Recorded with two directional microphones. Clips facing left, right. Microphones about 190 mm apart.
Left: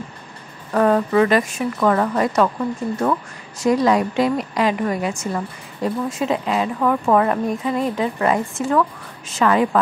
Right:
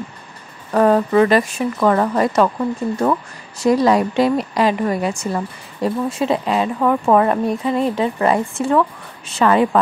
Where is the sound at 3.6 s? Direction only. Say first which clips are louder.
Right 2 dB; 35° right (ahead or behind).